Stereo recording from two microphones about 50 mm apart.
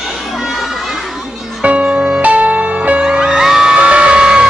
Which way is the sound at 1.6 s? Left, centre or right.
Right.